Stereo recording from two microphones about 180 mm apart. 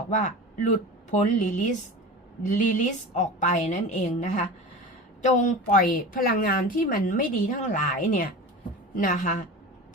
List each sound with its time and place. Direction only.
0.1 s a woman's voice: 45° left (ahead or behind)